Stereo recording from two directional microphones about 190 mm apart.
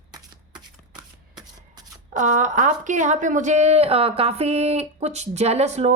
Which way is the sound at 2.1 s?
40° right (ahead or behind).